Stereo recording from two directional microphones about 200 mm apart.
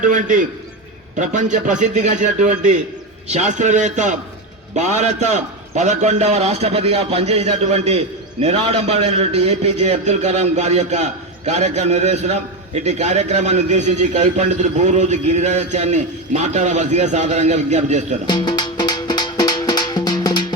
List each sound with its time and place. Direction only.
0.0 s a man's voice: 40° right (ahead or behind)
18.3 s music: 20° left (ahead or behind)